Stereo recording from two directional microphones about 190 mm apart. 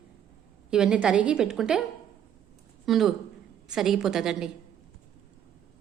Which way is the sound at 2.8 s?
Centre (ahead or behind).